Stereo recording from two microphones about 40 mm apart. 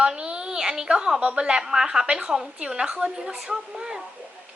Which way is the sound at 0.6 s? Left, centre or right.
Centre.